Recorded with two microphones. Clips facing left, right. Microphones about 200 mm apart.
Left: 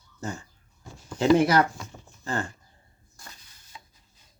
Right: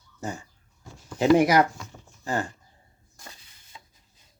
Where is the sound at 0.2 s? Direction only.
15° right (ahead or behind).